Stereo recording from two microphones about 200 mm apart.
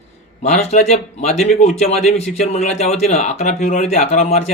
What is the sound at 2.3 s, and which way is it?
Speech, 35° left (ahead or behind).